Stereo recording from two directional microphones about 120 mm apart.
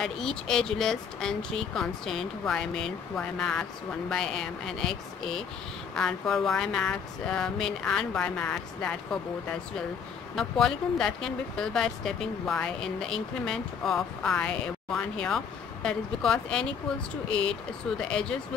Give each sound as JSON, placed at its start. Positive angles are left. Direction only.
{"t": 0.0, "sound": "speech", "side_deg": 5}